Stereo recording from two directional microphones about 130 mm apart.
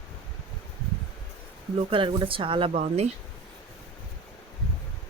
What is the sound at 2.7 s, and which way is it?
Speech, 55° right (ahead or behind).